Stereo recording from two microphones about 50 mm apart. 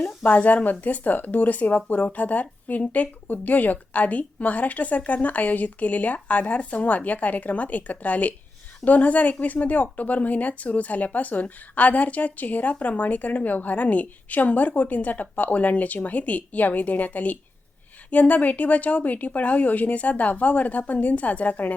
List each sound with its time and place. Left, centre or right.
0.3 s speech: left